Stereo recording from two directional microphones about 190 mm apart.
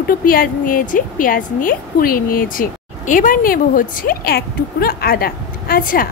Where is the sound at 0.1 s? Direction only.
50° left (ahead or behind).